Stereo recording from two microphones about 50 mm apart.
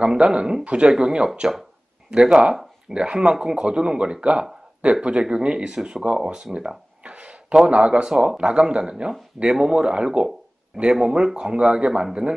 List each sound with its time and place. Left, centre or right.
0.0 s speech: centre